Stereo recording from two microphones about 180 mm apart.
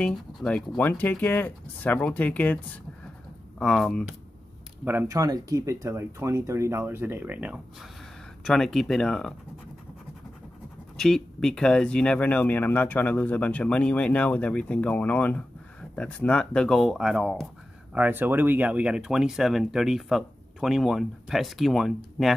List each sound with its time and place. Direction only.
0.0 s speech: 5° left (ahead or behind)
4.8 s speech: 15° right (ahead or behind); by 9.3 s 5° left (ahead or behind)
11.0 s speech: 5° left (ahead or behind)